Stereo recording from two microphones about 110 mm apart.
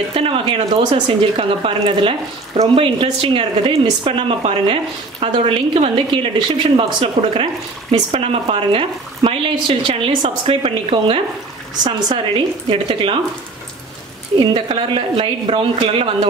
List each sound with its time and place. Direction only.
0.1 s speech: 60° right (ahead or behind)
6.4 s speech: 50° right (ahead or behind)
7.9 s speech: 75° right (ahead or behind); by 11.1 s 55° right (ahead or behind)
11.8 s speech: 40° right (ahead or behind)
12.6 s speech: 55° right (ahead or behind)
14.4 s speech: 55° right (ahead or behind)